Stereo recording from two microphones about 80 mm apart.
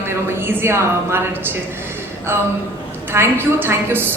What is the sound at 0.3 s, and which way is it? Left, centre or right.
A woman's voice, right.